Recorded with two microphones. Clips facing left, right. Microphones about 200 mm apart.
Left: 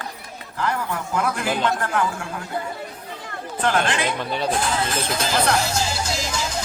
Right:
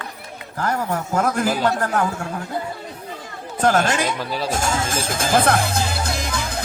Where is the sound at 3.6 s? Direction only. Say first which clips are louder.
Right 3 dB; 45° right (ahead or behind).